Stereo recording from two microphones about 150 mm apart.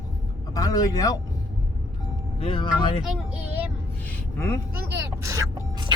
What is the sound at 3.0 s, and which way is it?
Speech, 5° right (ahead or behind).